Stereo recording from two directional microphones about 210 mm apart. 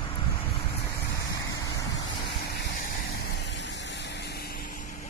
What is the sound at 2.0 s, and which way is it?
Vehicle, 55° left (ahead or behind).